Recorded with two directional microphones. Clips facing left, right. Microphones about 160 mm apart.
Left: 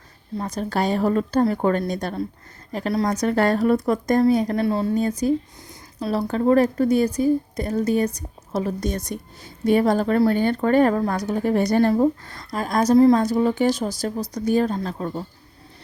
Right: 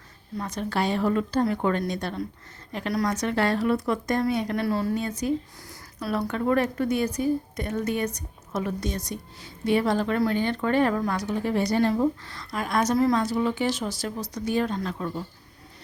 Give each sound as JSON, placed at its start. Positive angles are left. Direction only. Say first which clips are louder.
{"t": 0.3, "sound": "a woman's voice", "louder": "left 3 dB", "side_deg": 35}
{"t": 2.9, "sound": "speech", "louder": "left 3 dB", "side_deg": 25}
{"t": 3.2, "sound": "a woman's voice", "louder": "left 5 dB", "side_deg": 45}
{"t": 4.6, "sound": "speech", "louder": "left 4 dB", "side_deg": 25}
{"t": 5.2, "sound": "a woman's voice", "louder": "left 5 dB", "side_deg": 40}
{"t": 8.9, "sound": "speech", "louder": "left 4 dB", "side_deg": 50}
{"t": 13.1, "sound": "a woman's voice", "louder": "left 5 dB", "side_deg": 40}